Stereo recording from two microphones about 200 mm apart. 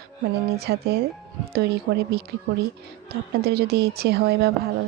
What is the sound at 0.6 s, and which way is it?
Speech, 50° right (ahead or behind).